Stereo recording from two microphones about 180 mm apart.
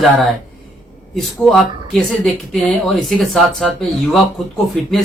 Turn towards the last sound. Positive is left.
turn(degrees=0)  # may be behind; listen again after turning